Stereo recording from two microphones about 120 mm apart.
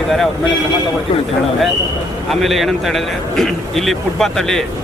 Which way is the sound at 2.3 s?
Centre (ahead or behind).